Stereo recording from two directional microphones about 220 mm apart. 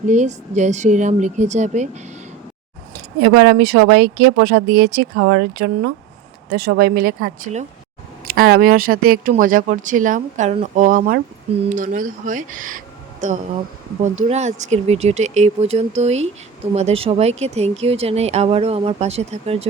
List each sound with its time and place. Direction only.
0.1 s speech: 30° right (ahead or behind)
3.2 s speech: 50° right (ahead or behind)
5.1 s speech: 60° right (ahead or behind); by 19.6 s 30° right (ahead or behind)